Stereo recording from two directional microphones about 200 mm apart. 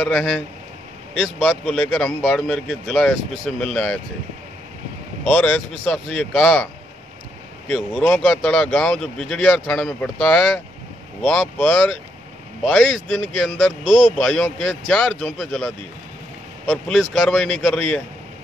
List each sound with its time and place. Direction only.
0.0 s speech: centre (ahead or behind)
5.2 s speech: 5° left (ahead or behind)
13.8 s speech: 40° left (ahead or behind)
14.1 s speech: centre (ahead or behind)